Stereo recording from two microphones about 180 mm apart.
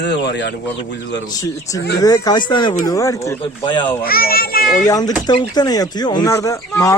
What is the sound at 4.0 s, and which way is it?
Speech, 55° left (ahead or behind).